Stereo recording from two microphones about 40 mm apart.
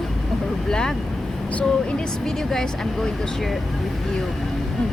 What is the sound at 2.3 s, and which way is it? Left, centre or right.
Speech, centre.